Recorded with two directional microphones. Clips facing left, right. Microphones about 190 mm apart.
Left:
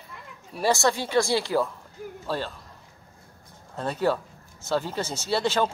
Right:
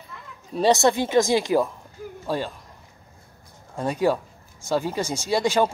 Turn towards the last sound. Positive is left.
turn(degrees=-10)  # may be behind; listen again after turning